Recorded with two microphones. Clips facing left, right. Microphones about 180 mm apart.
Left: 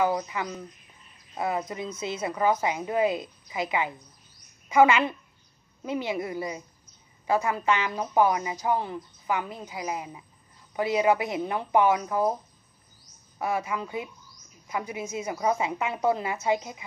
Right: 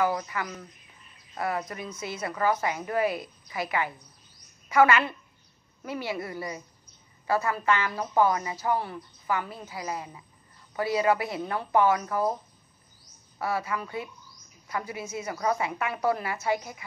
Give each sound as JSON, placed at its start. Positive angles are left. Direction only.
{"t": 0.0, "sound": "a woman's voice", "side_deg": 15}
{"t": 13.4, "sound": "a woman's voice", "side_deg": 15}